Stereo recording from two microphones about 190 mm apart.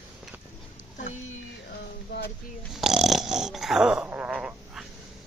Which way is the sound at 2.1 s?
60° left (ahead or behind).